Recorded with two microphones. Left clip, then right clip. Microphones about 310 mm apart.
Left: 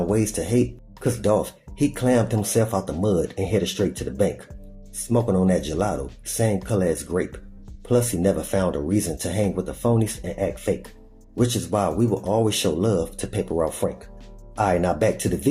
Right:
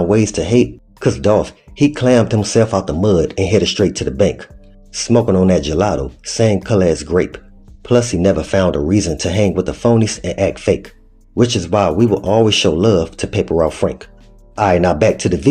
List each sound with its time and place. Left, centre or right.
0.1 s speech: left